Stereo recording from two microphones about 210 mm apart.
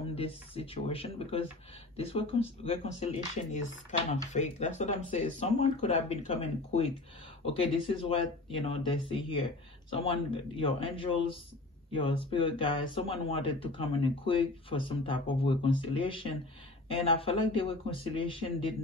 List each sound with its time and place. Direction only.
0.1 s speech: 30° left (ahead or behind)